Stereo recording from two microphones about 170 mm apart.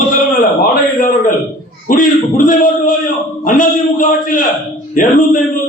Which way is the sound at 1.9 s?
55° left (ahead or behind).